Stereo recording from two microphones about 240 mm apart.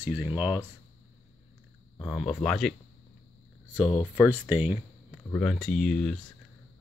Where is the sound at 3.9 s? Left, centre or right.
Centre.